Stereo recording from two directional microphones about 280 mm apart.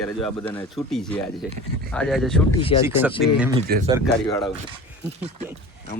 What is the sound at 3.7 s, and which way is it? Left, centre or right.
Speech, right.